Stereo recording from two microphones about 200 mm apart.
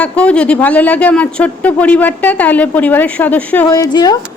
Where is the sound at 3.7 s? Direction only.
15° left (ahead or behind).